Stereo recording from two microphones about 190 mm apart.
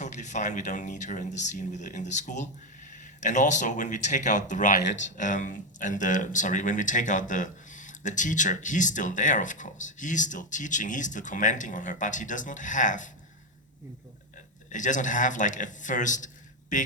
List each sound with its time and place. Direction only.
0.0 s speech: 40° left (ahead or behind)
14.7 s a man's voice: 40° left (ahead or behind)